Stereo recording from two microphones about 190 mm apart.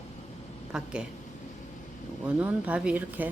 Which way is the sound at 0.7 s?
5° right (ahead or behind).